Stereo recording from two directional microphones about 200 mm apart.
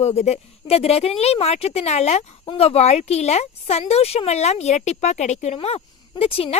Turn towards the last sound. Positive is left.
turn(degrees=30)  # may be behind; listen again after turning